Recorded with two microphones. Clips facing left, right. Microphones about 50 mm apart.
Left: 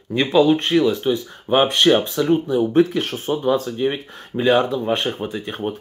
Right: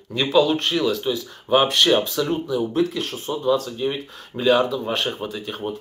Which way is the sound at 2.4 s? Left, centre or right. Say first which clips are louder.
Left 5 dB; left.